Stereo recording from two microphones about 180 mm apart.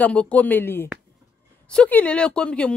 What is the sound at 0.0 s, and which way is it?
A woman's voice, 5° left (ahead or behind).